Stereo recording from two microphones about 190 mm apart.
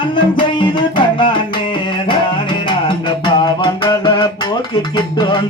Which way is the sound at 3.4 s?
25° left (ahead or behind).